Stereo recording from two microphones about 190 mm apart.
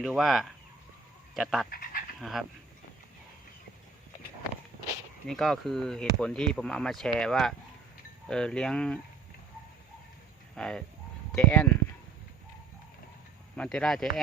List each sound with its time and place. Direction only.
0.0 s speech: centre (ahead or behind)
1.7 s speech: 50° left (ahead or behind)
2.2 s speech: centre (ahead or behind)
5.3 s speech: centre (ahead or behind)
10.5 s speech: 5° left (ahead or behind)
13.6 s speech: 5° left (ahead or behind)